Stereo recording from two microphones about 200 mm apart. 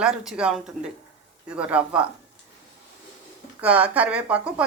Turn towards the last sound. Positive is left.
turn(degrees=-5)  # may be behind; listen again after turning